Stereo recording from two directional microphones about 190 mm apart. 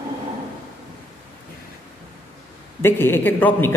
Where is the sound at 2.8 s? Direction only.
10° left (ahead or behind).